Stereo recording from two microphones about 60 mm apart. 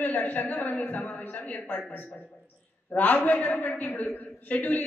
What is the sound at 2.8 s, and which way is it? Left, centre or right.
A man's voice, left.